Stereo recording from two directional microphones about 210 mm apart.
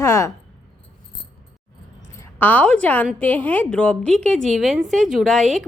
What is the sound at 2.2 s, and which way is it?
A woman's voice, 10° left (ahead or behind).